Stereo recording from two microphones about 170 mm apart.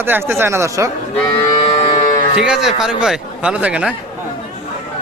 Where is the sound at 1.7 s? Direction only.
40° left (ahead or behind).